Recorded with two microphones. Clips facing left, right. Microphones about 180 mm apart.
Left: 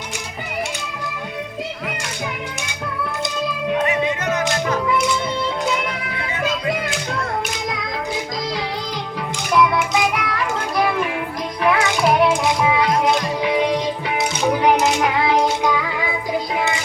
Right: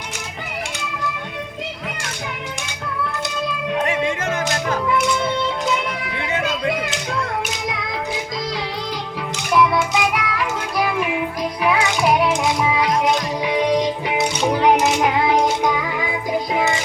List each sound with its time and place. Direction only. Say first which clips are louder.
9.6 s music: even; 5° right (ahead or behind)
14.6 s music: right 1 dB; 20° right (ahead or behind)